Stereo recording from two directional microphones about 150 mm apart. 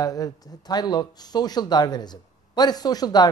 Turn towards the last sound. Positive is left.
turn(degrees=25)  # may be behind; listen again after turning